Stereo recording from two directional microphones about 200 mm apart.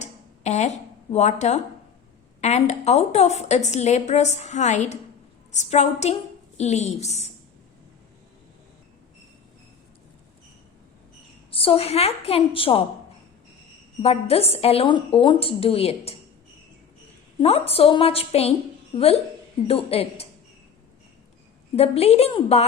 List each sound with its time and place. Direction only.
0.0 s a sound: 35° left (ahead or behind)
1.1 s a woman's voice: 35° left (ahead or behind)
11.5 s a woman's voice: 30° left (ahead or behind)
14.0 s a woman's voice: 30° left (ahead or behind)
17.4 s a woman's voice: 30° left (ahead or behind)
19.6 s a woman's voice: 30° left (ahead or behind)
21.8 s a woman's voice: 30° left (ahead or behind)